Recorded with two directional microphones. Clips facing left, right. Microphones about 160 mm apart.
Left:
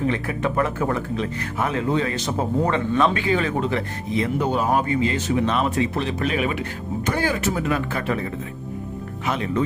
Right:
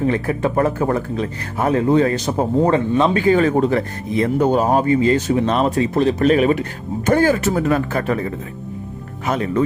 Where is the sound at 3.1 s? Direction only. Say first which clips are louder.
Right 7 dB; 45° right (ahead or behind).